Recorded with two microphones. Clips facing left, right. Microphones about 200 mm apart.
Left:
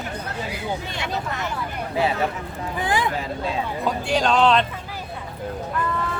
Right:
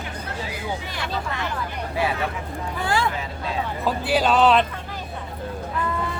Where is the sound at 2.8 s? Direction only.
20° left (ahead or behind).